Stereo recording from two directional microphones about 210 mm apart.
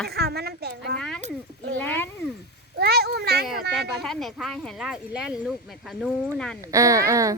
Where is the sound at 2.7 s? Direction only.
50° right (ahead or behind).